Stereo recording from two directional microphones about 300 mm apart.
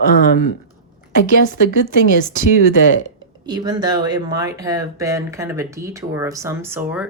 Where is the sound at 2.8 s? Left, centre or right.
Left.